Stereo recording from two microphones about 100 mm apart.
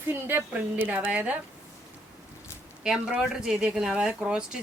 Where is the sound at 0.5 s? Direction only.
15° right (ahead or behind).